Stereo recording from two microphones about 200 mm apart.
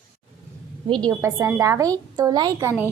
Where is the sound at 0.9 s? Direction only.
20° right (ahead or behind).